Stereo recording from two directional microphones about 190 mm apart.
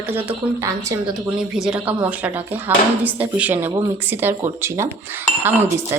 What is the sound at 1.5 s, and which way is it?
Speech, 5° right (ahead or behind).